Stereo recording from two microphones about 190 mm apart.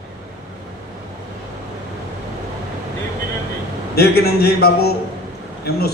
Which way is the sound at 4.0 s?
55° left (ahead or behind).